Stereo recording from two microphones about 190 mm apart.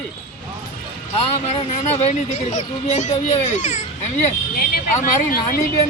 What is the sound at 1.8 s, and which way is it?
Speech, 35° left (ahead or behind).